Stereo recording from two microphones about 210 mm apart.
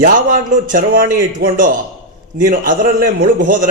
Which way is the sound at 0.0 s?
40° right (ahead or behind).